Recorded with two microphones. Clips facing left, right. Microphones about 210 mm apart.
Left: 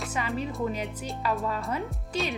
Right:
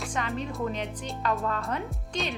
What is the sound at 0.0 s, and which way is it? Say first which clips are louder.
Speech: left 1 dB; 5° left (ahead or behind).